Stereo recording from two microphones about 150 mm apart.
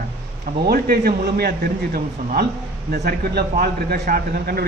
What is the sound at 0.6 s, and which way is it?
A man's voice, 85° right.